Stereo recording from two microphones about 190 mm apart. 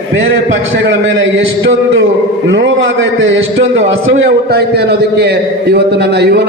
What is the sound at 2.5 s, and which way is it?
Speech, 75° right (ahead or behind).